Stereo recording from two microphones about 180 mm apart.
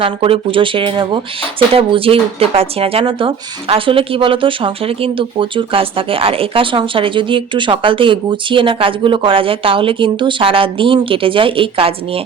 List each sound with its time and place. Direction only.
0.0 s speech: 30° right (ahead or behind)